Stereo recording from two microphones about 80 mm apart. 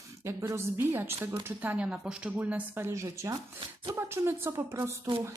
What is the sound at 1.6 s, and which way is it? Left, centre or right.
Speech, centre.